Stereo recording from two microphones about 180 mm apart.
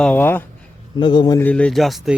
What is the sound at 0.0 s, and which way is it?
Speech, 10° left (ahead or behind).